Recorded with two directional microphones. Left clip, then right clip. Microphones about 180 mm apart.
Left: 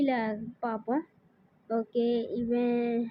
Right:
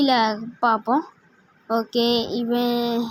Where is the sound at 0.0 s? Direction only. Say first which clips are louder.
Right 10 dB; 15° right (ahead or behind).